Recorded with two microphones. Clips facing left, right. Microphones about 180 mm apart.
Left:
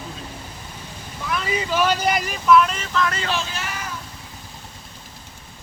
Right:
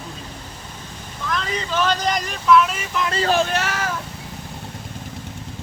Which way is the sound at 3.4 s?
65° right (ahead or behind).